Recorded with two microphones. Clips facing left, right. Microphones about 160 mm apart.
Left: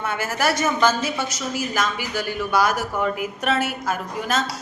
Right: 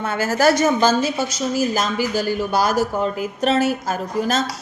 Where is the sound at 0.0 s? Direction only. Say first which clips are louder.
Right 6 dB; 30° right (ahead or behind).